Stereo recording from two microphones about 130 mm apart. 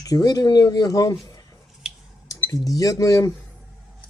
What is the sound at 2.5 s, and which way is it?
Speech, 25° left (ahead or behind).